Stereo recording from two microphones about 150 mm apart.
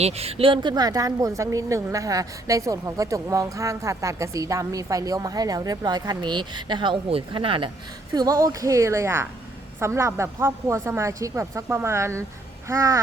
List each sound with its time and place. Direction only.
0.0 s a woman's voice: 45° right (ahead or behind)
8.1 s a woman's voice: 25° right (ahead or behind)